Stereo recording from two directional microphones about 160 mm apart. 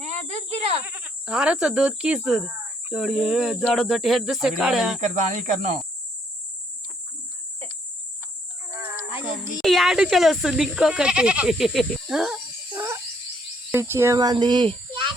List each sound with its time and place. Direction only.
0.9 s speech: 10° right (ahead or behind)
4.9 s speech: 50° right (ahead or behind)
9.6 s speech: centre (ahead or behind)
12.7 s frog: 15° right (ahead or behind)
13.7 s speech: 15° right (ahead or behind); by 15.1 s 30° right (ahead or behind)